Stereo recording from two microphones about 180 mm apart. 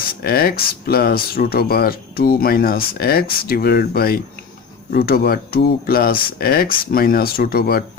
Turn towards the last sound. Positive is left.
turn(degrees=55)  # may be behind; listen again after turning